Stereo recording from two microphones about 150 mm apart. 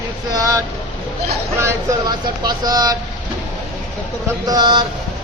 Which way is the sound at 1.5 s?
20° right (ahead or behind).